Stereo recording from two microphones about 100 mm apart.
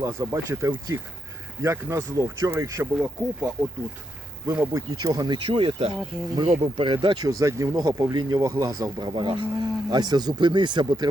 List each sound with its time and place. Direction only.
0.0 s speech: 25° right (ahead or behind)
4.5 s speech: 25° right (ahead or behind)
4.9 s speech: 35° right (ahead or behind)
5.5 s speech: 70° right (ahead or behind)
6.3 s speech: 55° right (ahead or behind)
7.3 s speech: 35° right (ahead or behind)